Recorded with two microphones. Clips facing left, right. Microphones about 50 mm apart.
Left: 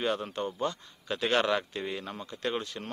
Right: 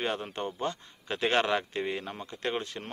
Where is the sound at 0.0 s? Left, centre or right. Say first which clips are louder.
Left 1 dB; right.